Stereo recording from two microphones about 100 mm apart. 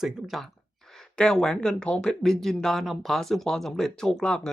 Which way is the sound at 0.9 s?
5° left (ahead or behind).